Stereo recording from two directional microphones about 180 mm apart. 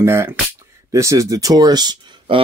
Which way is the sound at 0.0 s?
15° right (ahead or behind).